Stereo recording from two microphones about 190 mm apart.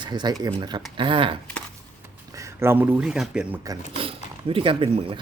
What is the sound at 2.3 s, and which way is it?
Speech, 15° right (ahead or behind).